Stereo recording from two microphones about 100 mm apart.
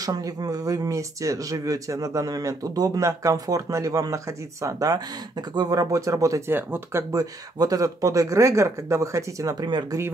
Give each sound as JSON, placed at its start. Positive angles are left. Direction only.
{"t": 0.0, "sound": "speech", "side_deg": -40}
{"t": 9.7, "sound": "speech", "side_deg": -50}